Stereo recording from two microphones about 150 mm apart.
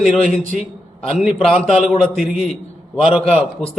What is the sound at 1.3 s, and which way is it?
Speech, 40° left (ahead or behind).